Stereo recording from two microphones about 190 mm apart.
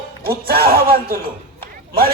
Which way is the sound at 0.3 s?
55° right (ahead or behind).